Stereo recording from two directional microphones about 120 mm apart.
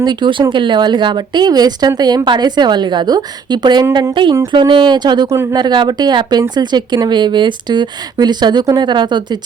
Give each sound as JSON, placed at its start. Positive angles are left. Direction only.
{"t": 0.0, "sound": "speech", "side_deg": -40}